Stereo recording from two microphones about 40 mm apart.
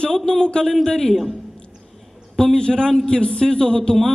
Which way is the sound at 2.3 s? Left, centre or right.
Centre.